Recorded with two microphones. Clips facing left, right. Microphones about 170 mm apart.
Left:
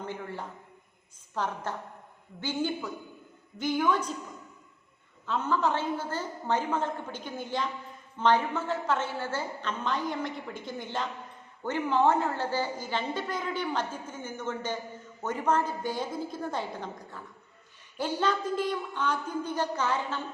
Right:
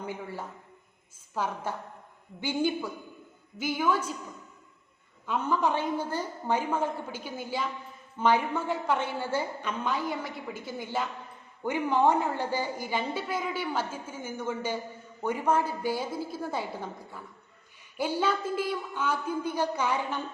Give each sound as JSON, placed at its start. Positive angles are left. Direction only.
{"t": 0.0, "sound": "a man's voice", "side_deg": -10}
{"t": 5.2, "sound": "a woman's voice", "side_deg": -15}